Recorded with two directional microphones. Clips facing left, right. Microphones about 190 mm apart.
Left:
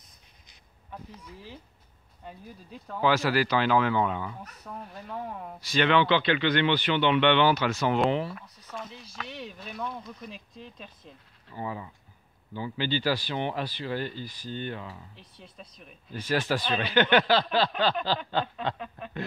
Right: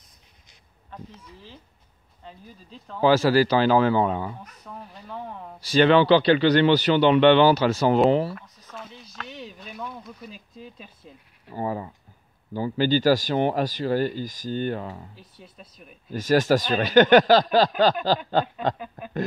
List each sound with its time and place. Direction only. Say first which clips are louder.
0.8 s speech: right 1 dB; 10° left (ahead or behind)
3.0 s a man's voice: right 6 dB; 35° right (ahead or behind)
4.4 s speech: even; 5° left (ahead or behind)
5.6 s a man's voice: right 6 dB; 35° right (ahead or behind)
8.4 s speech: left 1 dB; centre (ahead or behind)
11.5 s a man's voice: right 7 dB; 40° right (ahead or behind)
15.1 s speech: right 2 dB; 5° right (ahead or behind)
16.1 s speech: right 8 dB; 40° right (ahead or behind)
18.8 s speech: right 2 dB; 5° right (ahead or behind)